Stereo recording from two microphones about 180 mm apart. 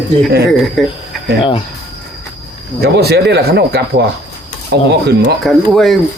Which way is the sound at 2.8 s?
65° right (ahead or behind).